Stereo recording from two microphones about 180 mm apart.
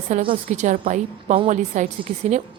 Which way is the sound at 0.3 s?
40° right (ahead or behind).